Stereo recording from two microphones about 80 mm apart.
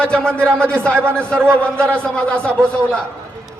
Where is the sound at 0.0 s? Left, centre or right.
Centre.